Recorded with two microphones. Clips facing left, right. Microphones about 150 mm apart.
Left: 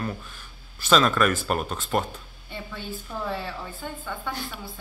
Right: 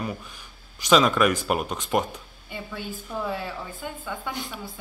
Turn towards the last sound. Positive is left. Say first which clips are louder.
# even
turn(degrees=-15)  # may be behind; listen again after turning